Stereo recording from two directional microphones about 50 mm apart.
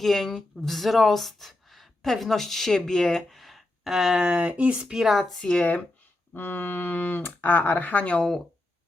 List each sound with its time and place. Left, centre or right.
0.0 s speech: centre; by 4.9 s right
4.9 s a woman's voice: centre
5.4 s speech: centre
6.3 s speech: left